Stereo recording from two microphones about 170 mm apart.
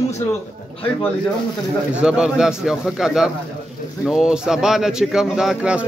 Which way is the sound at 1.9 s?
5° right (ahead or behind).